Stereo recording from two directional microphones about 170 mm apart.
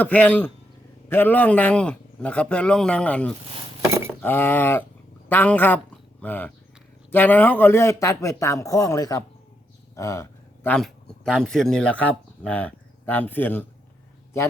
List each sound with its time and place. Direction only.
0.0 s a man's voice: 10° left (ahead or behind)
9.9 s a sound: 15° left (ahead or behind)
10.8 s speech: 5° left (ahead or behind)